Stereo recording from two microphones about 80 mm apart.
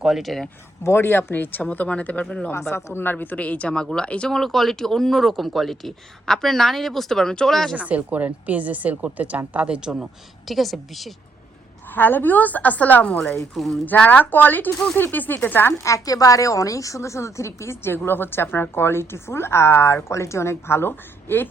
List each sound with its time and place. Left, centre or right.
0.0 s speech: centre
0.9 s a woman's voice: left
2.7 s a woman's voice: left; by 7.8 s centre
7.8 s a woman's voice: centre
10.5 s speech: centre
11.9 s a woman's voice: left
13.1 s speech: centre
13.8 s a woman's voice: left
15.8 s a woman's voice: left